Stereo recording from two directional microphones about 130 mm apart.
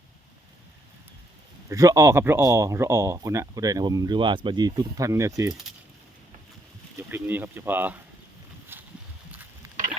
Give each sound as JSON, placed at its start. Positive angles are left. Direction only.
{"t": 1.7, "sound": "speech", "side_deg": -25}
{"t": 6.9, "sound": "speech", "side_deg": -15}
{"t": 8.7, "sound": "a sound", "side_deg": -15}